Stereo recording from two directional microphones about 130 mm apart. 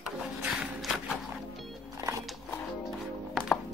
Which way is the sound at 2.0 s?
25° right (ahead or behind).